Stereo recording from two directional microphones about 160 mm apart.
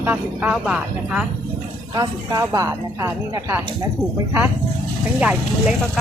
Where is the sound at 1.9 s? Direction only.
20° right (ahead or behind).